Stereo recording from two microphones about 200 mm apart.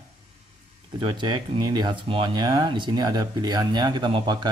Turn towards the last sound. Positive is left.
turn(degrees=-25)  # may be behind; listen again after turning